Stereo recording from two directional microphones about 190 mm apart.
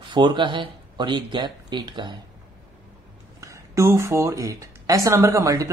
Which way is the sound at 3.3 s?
15° right (ahead or behind).